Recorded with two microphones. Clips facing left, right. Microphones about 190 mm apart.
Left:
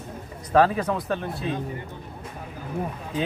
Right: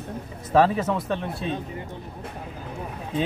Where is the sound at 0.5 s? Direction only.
Centre (ahead or behind).